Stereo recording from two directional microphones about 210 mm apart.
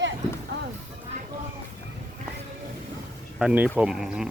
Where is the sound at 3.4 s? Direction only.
5° right (ahead or behind).